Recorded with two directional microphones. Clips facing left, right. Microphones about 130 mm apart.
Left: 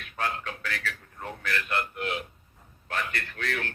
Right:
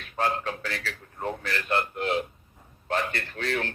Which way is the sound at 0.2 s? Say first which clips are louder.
Right 5 dB; 30° right (ahead or behind).